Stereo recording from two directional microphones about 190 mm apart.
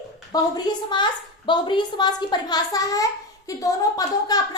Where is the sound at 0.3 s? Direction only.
20° left (ahead or behind).